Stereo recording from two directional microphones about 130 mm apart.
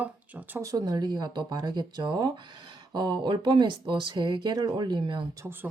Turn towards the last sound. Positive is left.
turn(degrees=-35)  # may be behind; listen again after turning